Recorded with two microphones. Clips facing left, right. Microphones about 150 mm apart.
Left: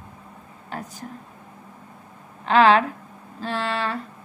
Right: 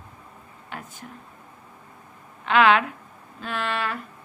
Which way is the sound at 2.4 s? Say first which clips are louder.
Left 2 dB; 35° left (ahead or behind).